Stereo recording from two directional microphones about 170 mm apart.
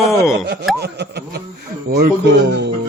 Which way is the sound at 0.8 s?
75° right (ahead or behind).